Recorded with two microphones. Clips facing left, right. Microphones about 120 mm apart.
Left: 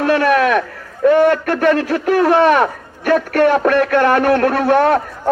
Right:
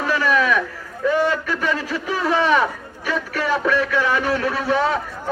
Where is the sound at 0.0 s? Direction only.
60° left (ahead or behind).